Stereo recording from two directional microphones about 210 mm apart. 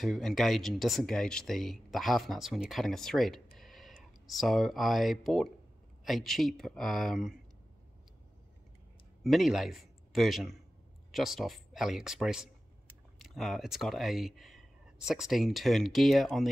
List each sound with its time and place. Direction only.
0.0 s speech: centre (ahead or behind)
9.2 s a man's voice: centre (ahead or behind)